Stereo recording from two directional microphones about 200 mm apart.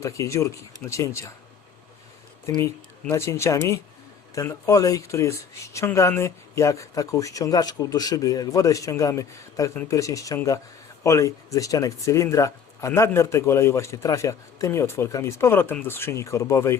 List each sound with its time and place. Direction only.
0.0 s speech: 15° left (ahead or behind)
2.6 s speech: 15° left (ahead or behind)